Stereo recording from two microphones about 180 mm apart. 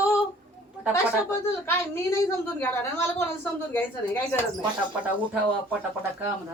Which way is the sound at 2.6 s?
15° left (ahead or behind).